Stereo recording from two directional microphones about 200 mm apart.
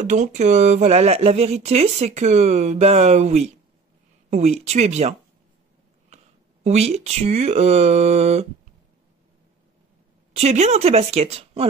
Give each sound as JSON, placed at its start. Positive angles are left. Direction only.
{"t": 0.0, "sound": "speech", "side_deg": -40}
{"t": 10.3, "sound": "speech", "side_deg": -35}